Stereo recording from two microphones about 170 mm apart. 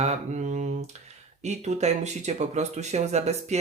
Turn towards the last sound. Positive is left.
turn(degrees=-40)  # may be behind; listen again after turning